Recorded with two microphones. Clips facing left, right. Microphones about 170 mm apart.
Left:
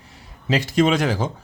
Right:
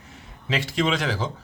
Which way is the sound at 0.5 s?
40° left (ahead or behind).